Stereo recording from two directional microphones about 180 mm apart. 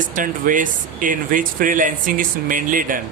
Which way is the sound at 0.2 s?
45° right (ahead or behind).